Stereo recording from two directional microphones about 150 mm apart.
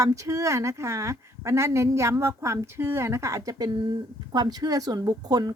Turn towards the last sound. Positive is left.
turn(degrees=-25)  # may be behind; listen again after turning